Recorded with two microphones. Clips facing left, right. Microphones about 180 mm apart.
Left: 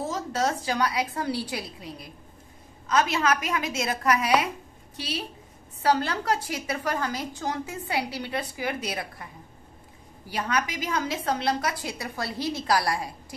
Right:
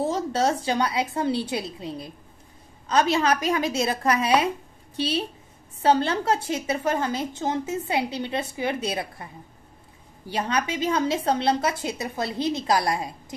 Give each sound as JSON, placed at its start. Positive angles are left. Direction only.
{"t": 0.0, "sound": "a woman's voice", "side_deg": -30}